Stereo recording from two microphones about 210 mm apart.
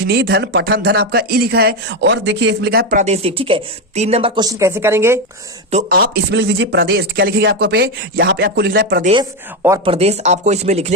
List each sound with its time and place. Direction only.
0.1 s speech: 55° right (ahead or behind)
3.0 s speech: 30° right (ahead or behind); by 5.2 s 10° right (ahead or behind)
5.7 s speech: 45° right (ahead or behind)
9.8 s speech: 30° right (ahead or behind)